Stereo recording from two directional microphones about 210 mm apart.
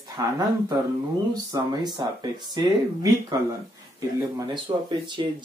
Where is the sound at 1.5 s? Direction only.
20° right (ahead or behind).